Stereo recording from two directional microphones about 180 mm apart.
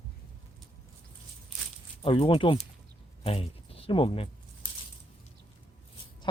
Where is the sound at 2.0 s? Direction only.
30° left (ahead or behind).